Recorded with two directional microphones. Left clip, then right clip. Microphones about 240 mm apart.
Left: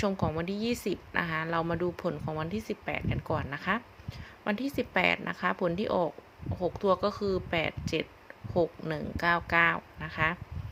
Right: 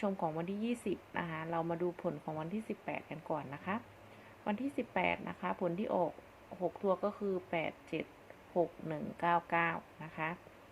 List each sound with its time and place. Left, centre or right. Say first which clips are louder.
0.0 s a woman's voice: left 6 dB; left